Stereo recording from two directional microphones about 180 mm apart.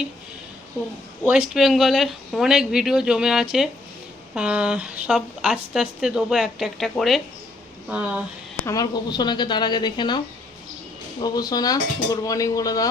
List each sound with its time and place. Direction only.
1.2 s speech: 5° right (ahead or behind)
8.6 s speech: 20° left (ahead or behind)
11.2 s speech: 20° left (ahead or behind)